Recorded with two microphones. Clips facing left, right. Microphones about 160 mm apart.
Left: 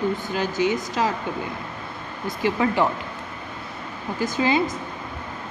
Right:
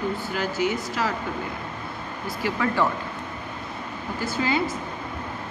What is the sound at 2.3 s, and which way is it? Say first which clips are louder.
Speech: left 4 dB; 20° left (ahead or behind).